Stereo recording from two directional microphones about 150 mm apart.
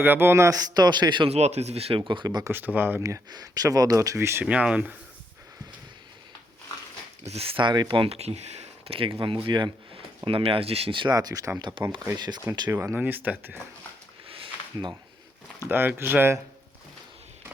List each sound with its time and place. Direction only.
0.0 s speech: 15° right (ahead or behind); by 1.3 s 30° right (ahead or behind)
1.3 s speech: 45° right (ahead or behind); by 2.5 s 25° right (ahead or behind)
2.5 s speech: 10° right (ahead or behind)
7.3 s speech: 40° right (ahead or behind); by 13.6 s 10° right (ahead or behind)
14.3 s a sound: 35° right (ahead or behind)
15.7 s speech: 15° right (ahead or behind)